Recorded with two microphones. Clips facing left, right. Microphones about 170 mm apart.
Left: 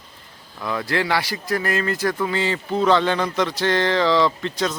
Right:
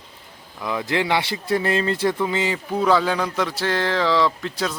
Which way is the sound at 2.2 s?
15° right (ahead or behind).